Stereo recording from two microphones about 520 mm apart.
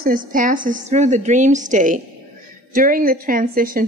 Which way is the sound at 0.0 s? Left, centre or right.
Centre.